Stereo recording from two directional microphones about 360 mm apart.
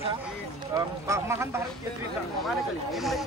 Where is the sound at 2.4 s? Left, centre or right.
Centre.